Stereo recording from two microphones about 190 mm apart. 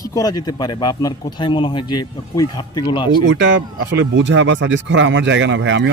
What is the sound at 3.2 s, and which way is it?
Speech, 80° right.